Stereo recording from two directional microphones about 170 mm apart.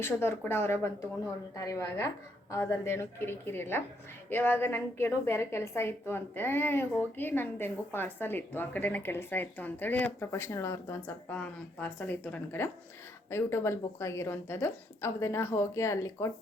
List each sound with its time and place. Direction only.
0.0 s a woman's voice: 15° left (ahead or behind)